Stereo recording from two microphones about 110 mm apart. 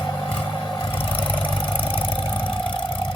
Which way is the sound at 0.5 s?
40° left (ahead or behind).